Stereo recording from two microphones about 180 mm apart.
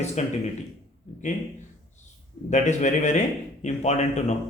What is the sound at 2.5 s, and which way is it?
Speech, 40° left (ahead or behind).